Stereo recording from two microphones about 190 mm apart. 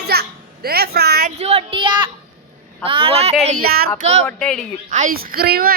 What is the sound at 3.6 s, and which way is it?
Speech, 50° right (ahead or behind).